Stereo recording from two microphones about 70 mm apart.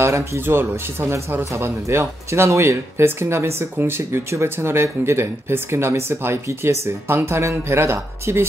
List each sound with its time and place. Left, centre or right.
0.0 s speech: right